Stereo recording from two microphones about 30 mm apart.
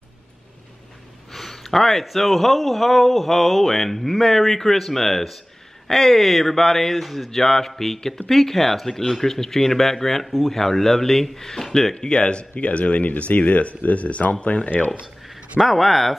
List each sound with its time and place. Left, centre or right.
1.3 s a sound: centre
2.0 s speech: centre
7.2 s speech: centre
11.9 s speech: left
15.6 s speech: centre